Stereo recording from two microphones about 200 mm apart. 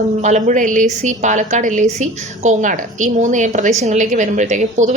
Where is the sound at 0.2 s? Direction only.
35° right (ahead or behind).